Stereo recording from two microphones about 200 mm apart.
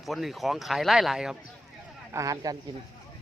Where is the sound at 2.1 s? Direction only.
15° right (ahead or behind).